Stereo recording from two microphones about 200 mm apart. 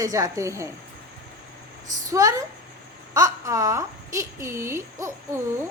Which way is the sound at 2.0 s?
15° right (ahead or behind).